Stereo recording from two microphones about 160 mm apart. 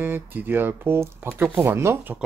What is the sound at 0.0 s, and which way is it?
Speech, 10° right (ahead or behind).